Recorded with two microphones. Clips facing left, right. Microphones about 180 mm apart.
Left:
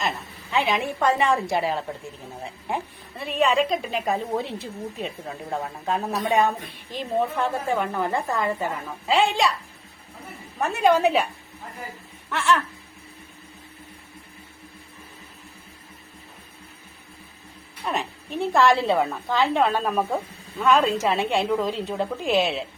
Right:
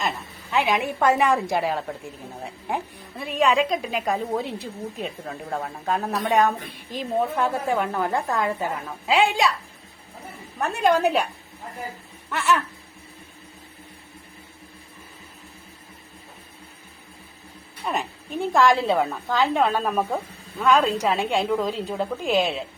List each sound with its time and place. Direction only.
0.5 s a woman's voice: centre (ahead or behind)
10.6 s a woman's voice: centre (ahead or behind)
12.3 s a woman's voice: centre (ahead or behind)
17.8 s a woman's voice: centre (ahead or behind)